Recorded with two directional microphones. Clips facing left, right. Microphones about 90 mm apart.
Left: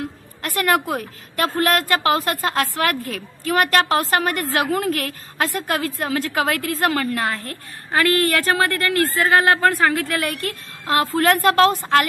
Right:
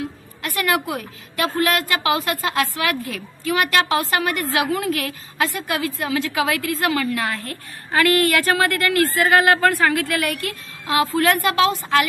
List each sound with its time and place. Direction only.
0.6 s a woman's voice: 40° left (ahead or behind)